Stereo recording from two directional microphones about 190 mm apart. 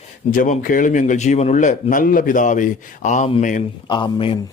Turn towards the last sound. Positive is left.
turn(degrees=25)  # may be behind; listen again after turning